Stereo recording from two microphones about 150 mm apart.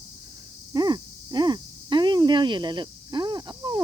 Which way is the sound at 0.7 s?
25° right (ahead or behind).